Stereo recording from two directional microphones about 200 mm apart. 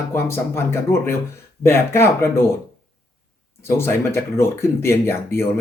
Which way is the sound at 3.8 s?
10° left (ahead or behind).